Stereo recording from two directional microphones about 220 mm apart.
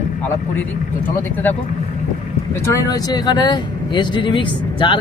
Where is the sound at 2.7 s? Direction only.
20° left (ahead or behind).